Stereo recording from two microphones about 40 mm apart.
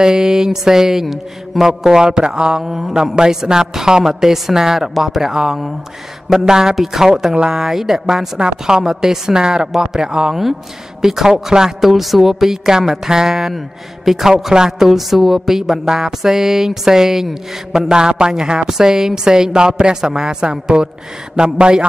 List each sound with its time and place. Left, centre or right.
0.0 s mantra: centre
1.0 s speech: centre
1.6 s mantra: centre
8.4 s mantra: centre
9.8 s a man's voice: centre
11.0 s mantra: centre
14.0 s speech: centre
14.8 s mantra: centre
21.4 s a man's voice: right